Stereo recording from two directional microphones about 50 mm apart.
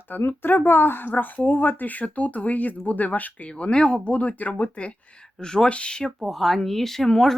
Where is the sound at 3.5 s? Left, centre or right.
Left.